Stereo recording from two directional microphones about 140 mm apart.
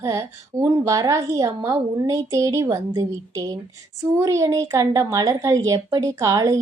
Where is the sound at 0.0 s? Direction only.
20° right (ahead or behind).